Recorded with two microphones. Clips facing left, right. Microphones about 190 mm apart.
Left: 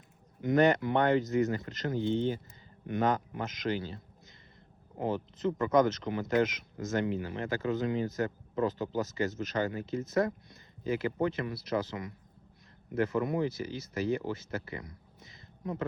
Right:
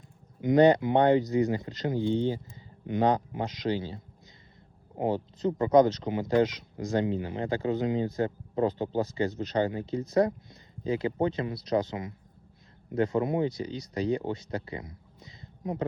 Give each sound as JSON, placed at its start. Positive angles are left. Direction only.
{"t": 0.4, "sound": "speech", "side_deg": -20}
{"t": 5.5, "sound": "speech", "side_deg": -20}